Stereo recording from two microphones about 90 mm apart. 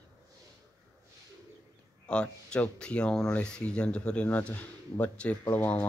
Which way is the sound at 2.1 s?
10° left (ahead or behind).